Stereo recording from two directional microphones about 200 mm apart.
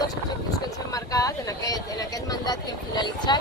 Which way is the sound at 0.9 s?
15° left (ahead or behind).